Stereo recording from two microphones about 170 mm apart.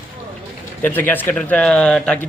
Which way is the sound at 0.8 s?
10° left (ahead or behind).